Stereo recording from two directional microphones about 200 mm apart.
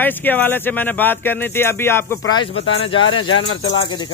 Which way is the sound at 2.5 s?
85° left.